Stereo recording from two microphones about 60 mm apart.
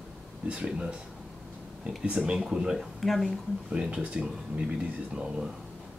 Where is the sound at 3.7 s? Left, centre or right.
Centre.